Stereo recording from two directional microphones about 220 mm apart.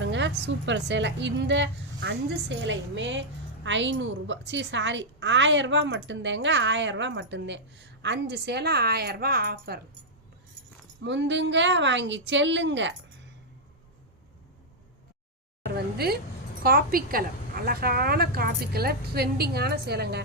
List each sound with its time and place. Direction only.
0.0 s a woman's voice: 55° right (ahead or behind)
11.0 s a woman's voice: 55° right (ahead or behind)
15.7 s a woman's voice: 45° right (ahead or behind)